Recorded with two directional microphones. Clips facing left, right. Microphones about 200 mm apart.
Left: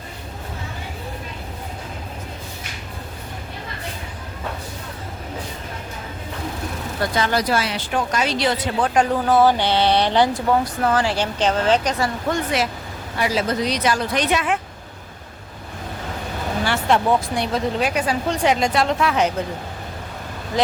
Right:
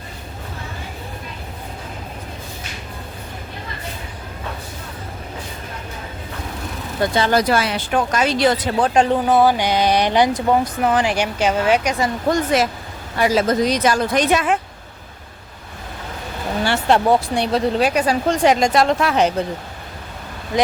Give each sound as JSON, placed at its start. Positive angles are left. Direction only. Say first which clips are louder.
{"t": 7.0, "sound": "speech", "louder": "right 3 dB", "side_deg": -25}
{"t": 7.3, "sound": "speech", "louder": "right 4 dB", "side_deg": -55}
{"t": 9.2, "sound": "speech", "louder": "right 1 dB", "side_deg": -15}
{"t": 12.3, "sound": "speech", "louder": "right 7 dB", "side_deg": -40}
{"t": 16.6, "sound": "speech", "louder": "right 3 dB", "side_deg": -30}